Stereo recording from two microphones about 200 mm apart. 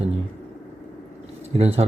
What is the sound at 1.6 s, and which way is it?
Speech, 30° right (ahead or behind).